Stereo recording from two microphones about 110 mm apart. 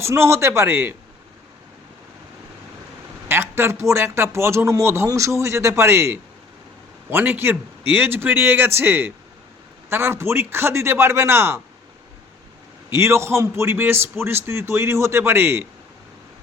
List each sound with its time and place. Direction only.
0.0 s a man's voice: 25° right (ahead or behind)
3.2 s a man's voice: 20° right (ahead or behind)
12.9 s a man's voice: 25° right (ahead or behind)